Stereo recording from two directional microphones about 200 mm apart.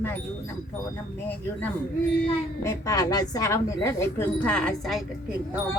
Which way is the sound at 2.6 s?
15° left (ahead or behind).